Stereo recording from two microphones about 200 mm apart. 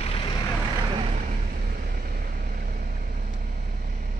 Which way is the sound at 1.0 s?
45° right (ahead or behind).